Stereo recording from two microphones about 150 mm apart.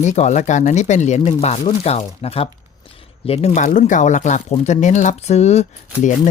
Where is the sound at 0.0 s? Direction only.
55° left (ahead or behind).